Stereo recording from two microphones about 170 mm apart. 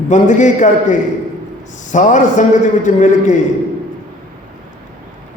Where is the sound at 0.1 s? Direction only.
45° left (ahead or behind).